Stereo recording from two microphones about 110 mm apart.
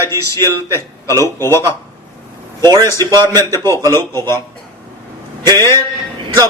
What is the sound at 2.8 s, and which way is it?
Speech, 25° left (ahead or behind).